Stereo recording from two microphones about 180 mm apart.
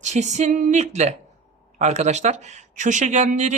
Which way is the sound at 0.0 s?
40° right (ahead or behind).